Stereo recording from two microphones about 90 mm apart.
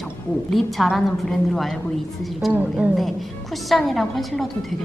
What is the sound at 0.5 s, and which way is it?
Speech, centre (ahead or behind).